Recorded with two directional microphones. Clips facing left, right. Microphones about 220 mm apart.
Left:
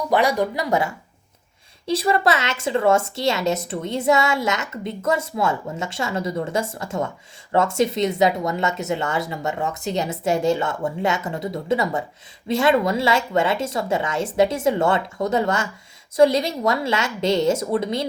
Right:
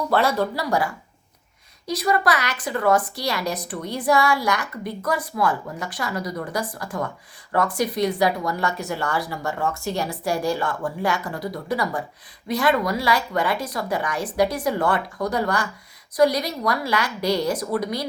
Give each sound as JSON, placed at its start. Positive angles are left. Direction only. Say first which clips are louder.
{"t": 0.1, "sound": "a woman's voice", "louder": "left 2 dB", "side_deg": 15}